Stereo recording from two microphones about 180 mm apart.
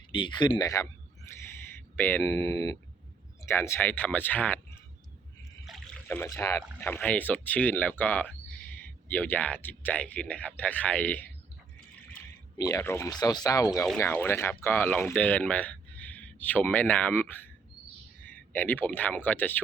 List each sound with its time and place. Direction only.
0.1 s speech: 25° left (ahead or behind); by 11.3 s 10° left (ahead or behind)
12.5 s a man's voice: 20° left (ahead or behind)